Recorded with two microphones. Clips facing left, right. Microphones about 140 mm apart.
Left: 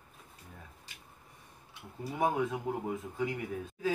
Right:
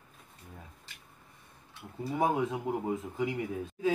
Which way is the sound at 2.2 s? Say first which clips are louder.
Right 1 dB; 20° right (ahead or behind).